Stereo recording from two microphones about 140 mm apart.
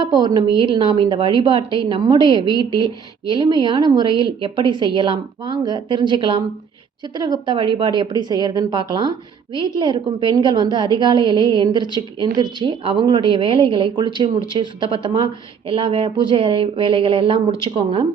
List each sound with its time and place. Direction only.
0.0 s a woman's voice: 30° right (ahead or behind)